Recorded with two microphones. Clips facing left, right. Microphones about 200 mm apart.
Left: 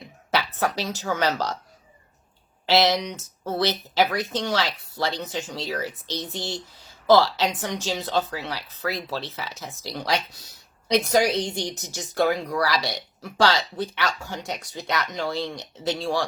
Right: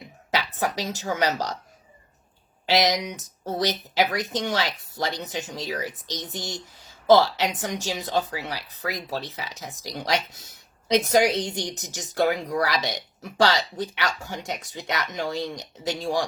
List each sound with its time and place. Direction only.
0.3 s a woman's voice: 15° right (ahead or behind)
2.6 s speech: 15° right (ahead or behind)